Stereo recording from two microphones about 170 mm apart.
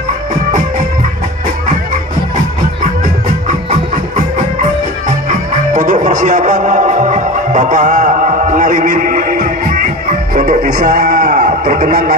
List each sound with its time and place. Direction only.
5.7 s music: 50° right (ahead or behind)
10.3 s speech: 55° right (ahead or behind)